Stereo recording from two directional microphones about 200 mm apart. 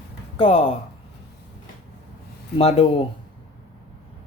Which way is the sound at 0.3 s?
30° left (ahead or behind).